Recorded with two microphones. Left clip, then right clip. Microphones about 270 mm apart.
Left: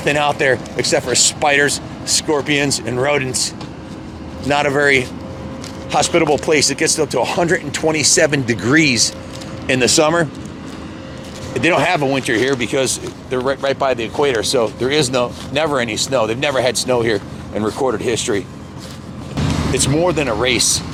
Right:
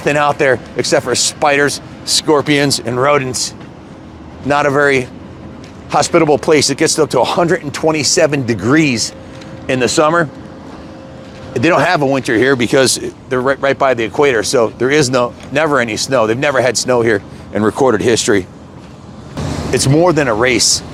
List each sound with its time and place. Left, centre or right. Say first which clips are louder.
0.0 s speech: right 3 dB; centre
11.5 s speech: right 3 dB; centre; by 18.4 s right
19.7 s speech: right 6 dB; right